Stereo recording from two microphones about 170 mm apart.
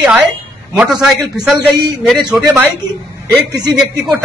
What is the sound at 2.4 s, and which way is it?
Speech, 15° right (ahead or behind).